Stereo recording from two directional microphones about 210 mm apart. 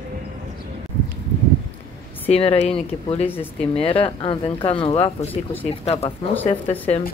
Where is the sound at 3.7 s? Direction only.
25° left (ahead or behind).